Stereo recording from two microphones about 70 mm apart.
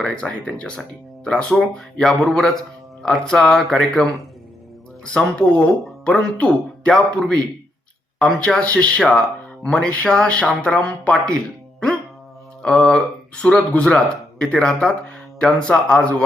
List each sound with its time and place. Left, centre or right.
0.0 s speech: centre
1.5 s speech: centre
8.4 s speech: centre